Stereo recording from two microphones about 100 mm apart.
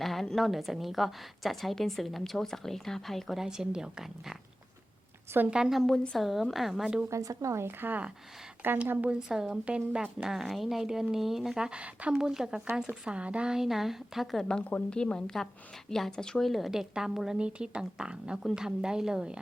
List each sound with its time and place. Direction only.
0.0 s a woman's voice: centre (ahead or behind)
5.5 s a woman's voice: 5° right (ahead or behind)
7.1 s a woman's voice: 35° right (ahead or behind); by 19.4 s 10° right (ahead or behind)